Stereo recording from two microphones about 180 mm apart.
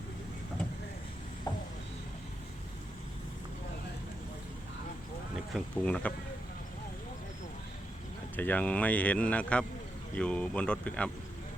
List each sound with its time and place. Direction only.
1.5 s a sound: 20° left (ahead or behind)
5.5 s speech: 5° left (ahead or behind)
8.4 s speech: 10° left (ahead or behind)